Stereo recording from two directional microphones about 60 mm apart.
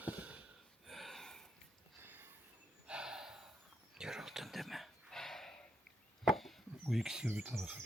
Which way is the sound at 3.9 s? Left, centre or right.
Centre.